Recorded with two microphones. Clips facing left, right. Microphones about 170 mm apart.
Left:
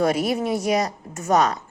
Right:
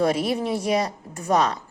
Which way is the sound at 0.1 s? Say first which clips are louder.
Left 1 dB; 30° right (ahead or behind).